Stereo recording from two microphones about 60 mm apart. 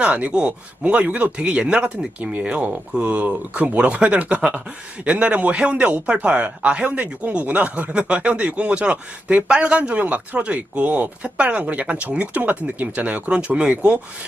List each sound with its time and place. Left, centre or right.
0.0 s speech: centre